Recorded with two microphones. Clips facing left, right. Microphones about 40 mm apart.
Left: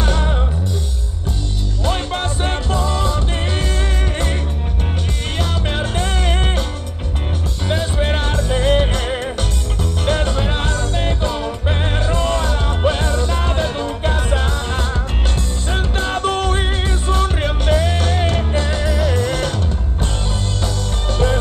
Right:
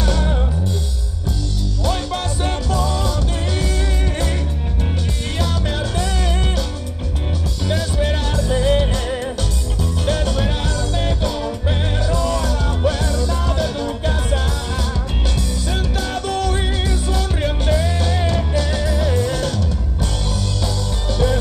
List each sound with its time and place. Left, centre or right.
0.0 s music: left
1.9 s music: left
5.4 s music: left
7.6 s music: left
19.0 s music: left
20.6 s music: left